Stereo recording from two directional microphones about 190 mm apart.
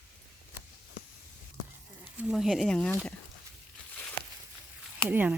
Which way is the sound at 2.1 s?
5° right (ahead or behind).